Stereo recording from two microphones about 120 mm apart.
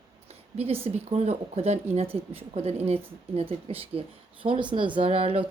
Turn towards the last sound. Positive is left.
turn(degrees=-50)  # may be behind; listen again after turning